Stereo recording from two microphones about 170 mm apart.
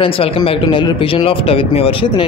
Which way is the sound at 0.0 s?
35° left (ahead or behind).